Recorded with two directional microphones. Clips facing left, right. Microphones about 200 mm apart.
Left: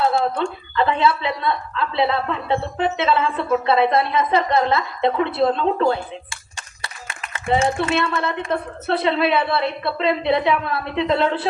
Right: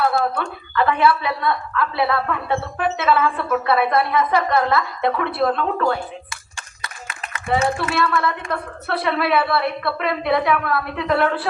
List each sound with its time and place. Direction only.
0.8 s speech: 20° left (ahead or behind)
6.8 s a sound: 30° left (ahead or behind)
7.5 s speech: 25° left (ahead or behind)